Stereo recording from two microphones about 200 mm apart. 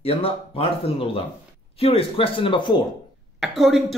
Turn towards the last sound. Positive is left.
turn(degrees=0)  # may be behind; listen again after turning